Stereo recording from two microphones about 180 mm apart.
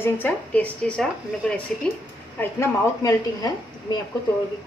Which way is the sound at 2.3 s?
15° left (ahead or behind).